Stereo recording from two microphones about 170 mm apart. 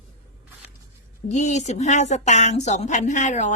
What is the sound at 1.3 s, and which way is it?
A woman's voice, 45° left (ahead or behind).